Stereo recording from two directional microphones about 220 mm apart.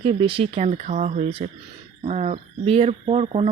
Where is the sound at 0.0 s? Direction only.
25° right (ahead or behind).